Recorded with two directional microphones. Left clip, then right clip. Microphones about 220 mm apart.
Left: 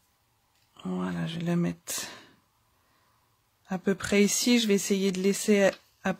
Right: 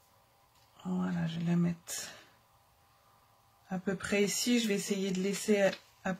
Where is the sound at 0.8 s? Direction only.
50° left (ahead or behind).